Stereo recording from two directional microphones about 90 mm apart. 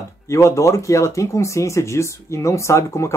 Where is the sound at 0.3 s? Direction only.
35° left (ahead or behind).